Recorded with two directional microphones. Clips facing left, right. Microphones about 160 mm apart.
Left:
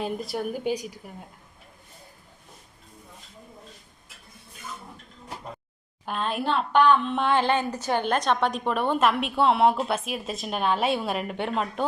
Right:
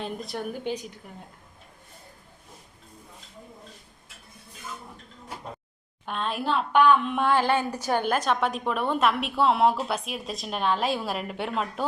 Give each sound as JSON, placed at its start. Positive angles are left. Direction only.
{"t": 0.0, "sound": "speech", "side_deg": 5}
{"t": 6.1, "sound": "a woman's voice", "side_deg": 0}
{"t": 7.2, "sound": "a sound", "side_deg": -10}
{"t": 7.9, "sound": "a woman's voice", "side_deg": -10}